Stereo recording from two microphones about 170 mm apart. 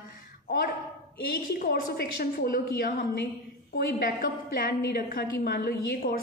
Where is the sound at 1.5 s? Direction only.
60° left (ahead or behind).